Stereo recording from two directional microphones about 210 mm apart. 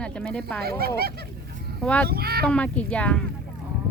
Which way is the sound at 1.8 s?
5° left (ahead or behind).